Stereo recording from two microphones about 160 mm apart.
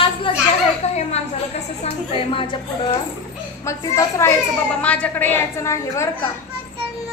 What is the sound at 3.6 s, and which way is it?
Speech, 20° left (ahead or behind).